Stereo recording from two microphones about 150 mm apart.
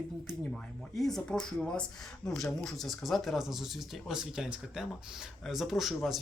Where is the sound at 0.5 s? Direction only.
Centre (ahead or behind).